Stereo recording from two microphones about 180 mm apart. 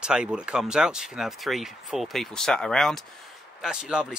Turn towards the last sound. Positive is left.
turn(degrees=-5)  # may be behind; listen again after turning